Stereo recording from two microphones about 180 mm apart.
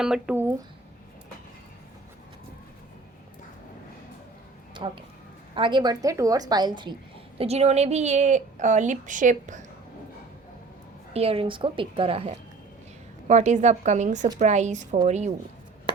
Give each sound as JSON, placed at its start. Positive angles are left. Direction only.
{"t": 0.0, "sound": "speech", "side_deg": -5}
{"t": 4.7, "sound": "a woman's voice", "side_deg": -25}
{"t": 7.3, "sound": "a woman's voice", "side_deg": -35}
{"t": 11.1, "sound": "a woman's voice", "side_deg": -35}